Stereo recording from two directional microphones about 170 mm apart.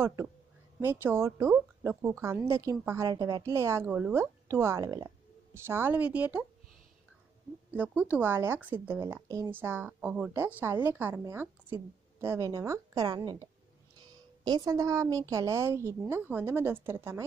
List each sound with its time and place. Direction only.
0.0 s speech: 15° right (ahead or behind)
7.7 s speech: 10° right (ahead or behind)